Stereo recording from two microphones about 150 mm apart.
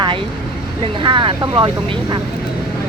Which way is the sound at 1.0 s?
35° right (ahead or behind).